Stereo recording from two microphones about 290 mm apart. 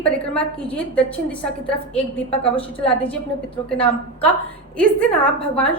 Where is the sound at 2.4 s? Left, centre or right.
Centre.